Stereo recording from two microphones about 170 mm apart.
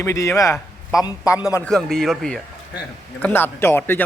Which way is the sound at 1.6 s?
5° left (ahead or behind).